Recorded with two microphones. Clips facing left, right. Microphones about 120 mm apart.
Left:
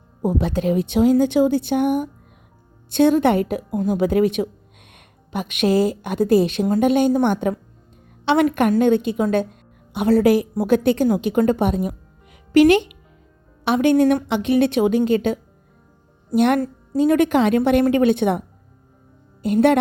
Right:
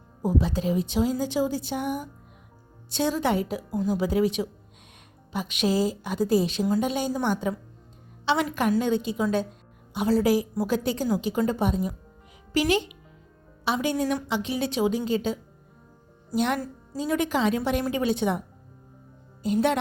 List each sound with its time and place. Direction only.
0.2 s a woman's voice: 60° left (ahead or behind)